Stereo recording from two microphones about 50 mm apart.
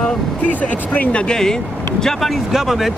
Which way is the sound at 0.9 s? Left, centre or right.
Left.